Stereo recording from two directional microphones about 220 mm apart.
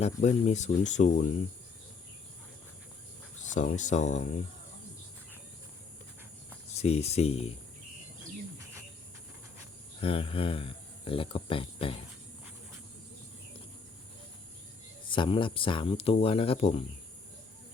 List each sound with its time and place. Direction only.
0.0 s speech: 30° left (ahead or behind)
3.4 s speech: 35° left (ahead or behind)
6.7 s speech: 30° left (ahead or behind)
10.0 s speech: 25° left (ahead or behind)
15.0 s speech: 20° left (ahead or behind)